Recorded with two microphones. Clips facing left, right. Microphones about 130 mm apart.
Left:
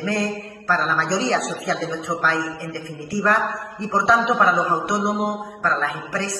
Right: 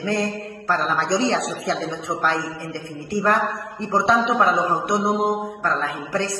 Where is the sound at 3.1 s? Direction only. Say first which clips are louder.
Even; 20° right (ahead or behind).